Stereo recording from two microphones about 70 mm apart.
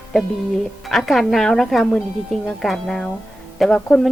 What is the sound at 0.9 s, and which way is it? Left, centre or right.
Speech, centre.